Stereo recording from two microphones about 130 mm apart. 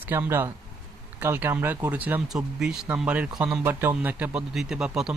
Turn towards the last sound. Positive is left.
turn(degrees=-5)  # may be behind; listen again after turning